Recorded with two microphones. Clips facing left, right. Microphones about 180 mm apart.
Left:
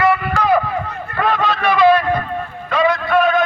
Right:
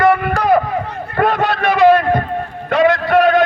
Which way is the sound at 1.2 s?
50° right (ahead or behind).